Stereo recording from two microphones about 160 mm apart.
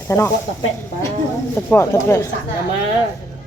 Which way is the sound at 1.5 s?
15° left (ahead or behind).